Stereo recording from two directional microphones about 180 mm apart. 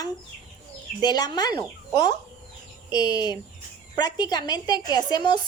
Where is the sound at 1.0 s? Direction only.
20° left (ahead or behind).